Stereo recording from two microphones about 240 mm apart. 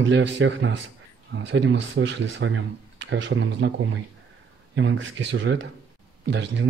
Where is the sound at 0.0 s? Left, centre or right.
Right.